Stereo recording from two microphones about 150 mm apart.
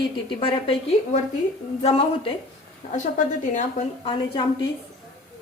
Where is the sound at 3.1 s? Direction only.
55° left (ahead or behind).